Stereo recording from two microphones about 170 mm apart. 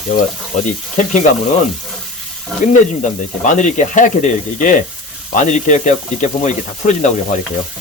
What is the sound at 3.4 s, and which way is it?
Speech, 45° left (ahead or behind).